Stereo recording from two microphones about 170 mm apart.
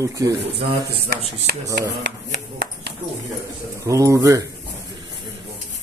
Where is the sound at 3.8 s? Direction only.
20° right (ahead or behind).